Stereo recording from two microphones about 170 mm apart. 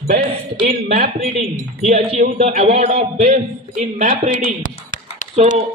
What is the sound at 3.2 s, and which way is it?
Speech, 55° right (ahead or behind).